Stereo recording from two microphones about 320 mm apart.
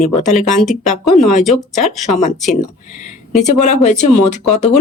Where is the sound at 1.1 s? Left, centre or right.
Centre.